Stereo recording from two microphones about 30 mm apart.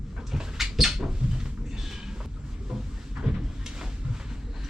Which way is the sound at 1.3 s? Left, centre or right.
Centre.